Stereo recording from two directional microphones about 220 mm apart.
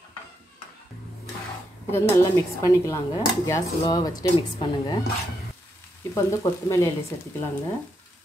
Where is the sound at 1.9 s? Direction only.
10° left (ahead or behind).